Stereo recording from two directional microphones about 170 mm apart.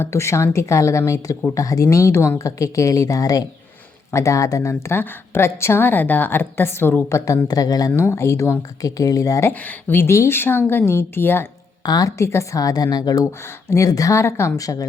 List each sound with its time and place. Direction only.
0.0 s a woman's voice: 15° left (ahead or behind)